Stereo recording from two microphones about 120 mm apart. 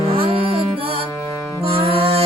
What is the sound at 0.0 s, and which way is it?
Music, 50° right (ahead or behind).